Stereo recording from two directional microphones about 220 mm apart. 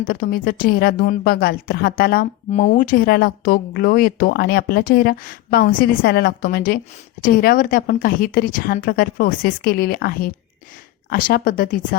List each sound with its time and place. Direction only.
0.0 s speech: 40° left (ahead or behind)
2.5 s a woman's voice: 30° left (ahead or behind)